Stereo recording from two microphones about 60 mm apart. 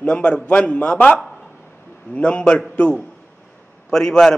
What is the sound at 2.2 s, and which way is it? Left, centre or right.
A man's voice, centre.